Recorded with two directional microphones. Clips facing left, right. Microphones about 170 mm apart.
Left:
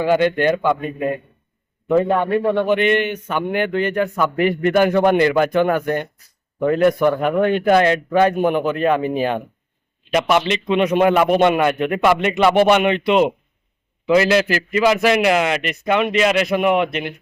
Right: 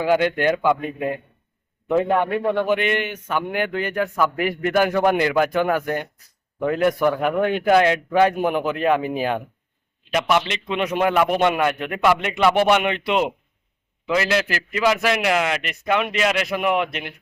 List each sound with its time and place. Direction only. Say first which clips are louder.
0.0 s a man's voice: left 3 dB; 10° right (ahead or behind)
10.8 s a man's voice: left 3 dB; centre (ahead or behind)
14.1 s a man's voice: left 6 dB; 5° left (ahead or behind)